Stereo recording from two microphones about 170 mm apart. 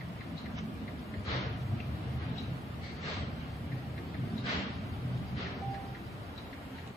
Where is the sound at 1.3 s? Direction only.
Centre (ahead or behind).